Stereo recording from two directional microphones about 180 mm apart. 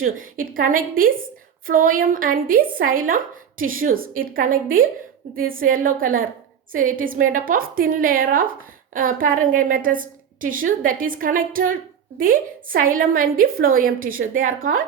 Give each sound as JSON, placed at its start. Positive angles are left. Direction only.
{"t": 0.0, "sound": "a woman's voice", "side_deg": -50}